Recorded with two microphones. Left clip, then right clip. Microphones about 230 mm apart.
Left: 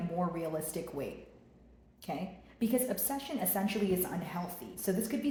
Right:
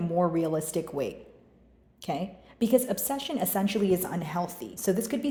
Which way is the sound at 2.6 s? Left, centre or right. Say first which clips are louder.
Right 8 dB; right.